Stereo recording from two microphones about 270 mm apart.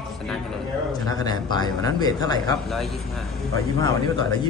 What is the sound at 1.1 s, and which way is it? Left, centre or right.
Speech, centre.